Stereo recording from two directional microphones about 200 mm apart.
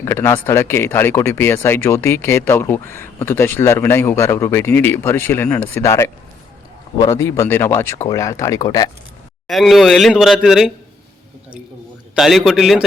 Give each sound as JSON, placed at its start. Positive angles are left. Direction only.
{"t": 0.0, "sound": "speech", "side_deg": 10}
{"t": 9.5, "sound": "a man's voice", "side_deg": 0}
{"t": 12.1, "sound": "a man's voice", "side_deg": 0}